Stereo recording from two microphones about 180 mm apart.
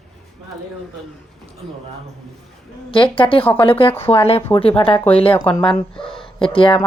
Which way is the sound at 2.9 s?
30° left (ahead or behind).